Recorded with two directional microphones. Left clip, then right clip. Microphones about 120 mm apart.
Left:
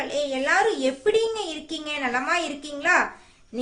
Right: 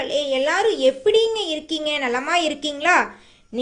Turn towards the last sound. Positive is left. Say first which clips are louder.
# right 4 dB
turn(degrees=-35)  # may be behind; listen again after turning